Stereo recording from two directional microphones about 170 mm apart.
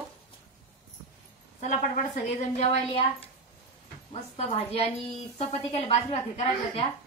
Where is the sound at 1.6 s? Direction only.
45° left (ahead or behind).